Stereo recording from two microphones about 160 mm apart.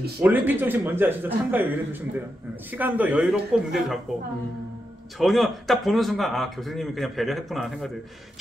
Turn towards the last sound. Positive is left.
turn(degrees=0)  # may be behind; listen again after turning